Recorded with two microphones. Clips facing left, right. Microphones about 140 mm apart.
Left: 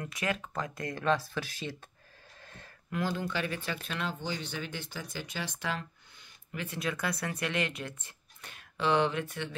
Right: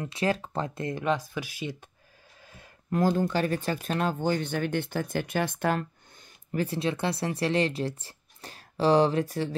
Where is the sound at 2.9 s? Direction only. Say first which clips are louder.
Right 8 dB; 40° right (ahead or behind).